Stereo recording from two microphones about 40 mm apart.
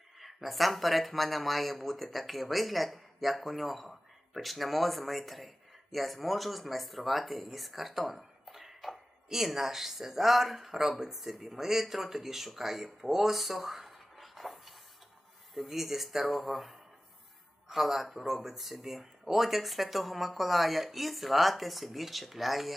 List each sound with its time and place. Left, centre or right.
0.2 s speech: centre